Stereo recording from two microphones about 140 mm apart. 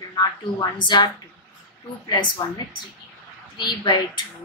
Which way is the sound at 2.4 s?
30° left (ahead or behind).